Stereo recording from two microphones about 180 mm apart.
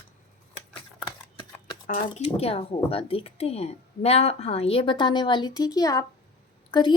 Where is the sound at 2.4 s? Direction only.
35° left (ahead or behind).